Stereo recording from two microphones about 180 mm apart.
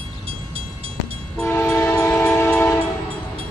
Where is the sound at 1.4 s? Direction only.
15° left (ahead or behind).